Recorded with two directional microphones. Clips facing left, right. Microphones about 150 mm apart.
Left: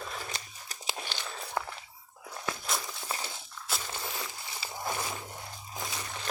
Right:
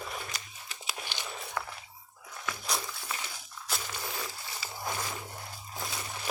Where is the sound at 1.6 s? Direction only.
25° left (ahead or behind).